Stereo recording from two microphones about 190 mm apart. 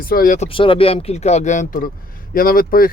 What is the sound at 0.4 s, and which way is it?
Speech, 25° left (ahead or behind).